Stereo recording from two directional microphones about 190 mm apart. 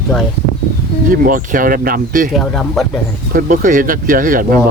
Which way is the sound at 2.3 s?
5° left (ahead or behind).